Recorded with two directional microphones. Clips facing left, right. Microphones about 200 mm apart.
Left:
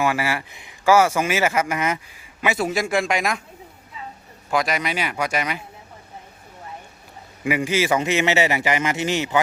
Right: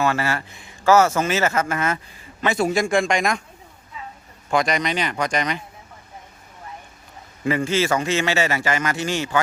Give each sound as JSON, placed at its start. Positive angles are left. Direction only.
{"t": 0.0, "sound": "speech", "side_deg": 10}
{"t": 4.5, "sound": "speech", "side_deg": 5}
{"t": 7.4, "sound": "speech", "side_deg": 10}